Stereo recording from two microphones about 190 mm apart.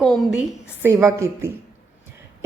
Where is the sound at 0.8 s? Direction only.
15° right (ahead or behind).